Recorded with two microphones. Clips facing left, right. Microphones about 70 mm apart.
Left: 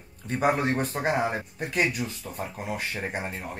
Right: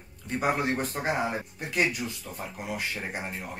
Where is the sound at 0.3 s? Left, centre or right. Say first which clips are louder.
Left 3 dB; left.